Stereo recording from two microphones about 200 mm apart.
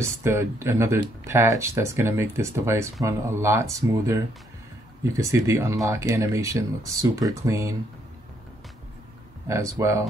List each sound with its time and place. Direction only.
0.0 s speech: 15° right (ahead or behind)
9.5 s speech: 15° right (ahead or behind)